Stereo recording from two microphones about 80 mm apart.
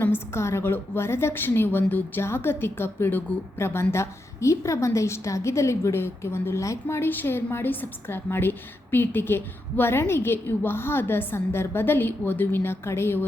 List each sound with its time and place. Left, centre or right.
0.0 s a woman's voice: left
3.6 s a woman's voice: left